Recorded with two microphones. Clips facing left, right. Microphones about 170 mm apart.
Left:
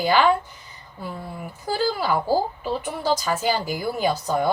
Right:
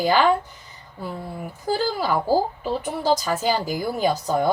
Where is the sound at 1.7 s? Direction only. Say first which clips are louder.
Even; 40° right (ahead or behind).